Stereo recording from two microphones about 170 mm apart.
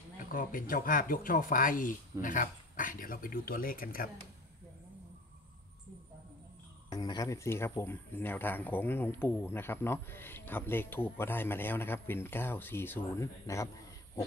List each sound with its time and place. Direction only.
0.2 s speech: 55° left (ahead or behind)
6.9 s speech: 25° left (ahead or behind)